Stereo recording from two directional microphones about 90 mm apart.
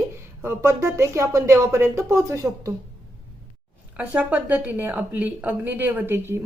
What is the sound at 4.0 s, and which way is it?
A woman's voice, 15° right (ahead or behind).